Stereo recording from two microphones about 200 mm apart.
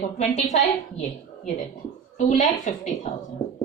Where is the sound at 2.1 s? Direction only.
35° left (ahead or behind).